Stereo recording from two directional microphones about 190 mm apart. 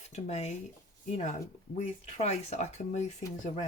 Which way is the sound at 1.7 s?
35° left (ahead or behind).